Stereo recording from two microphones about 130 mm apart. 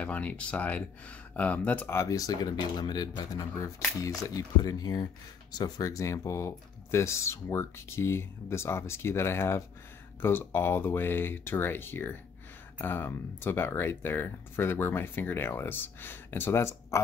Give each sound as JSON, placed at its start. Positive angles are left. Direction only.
{"t": 0.0, "sound": "speech", "side_deg": 10}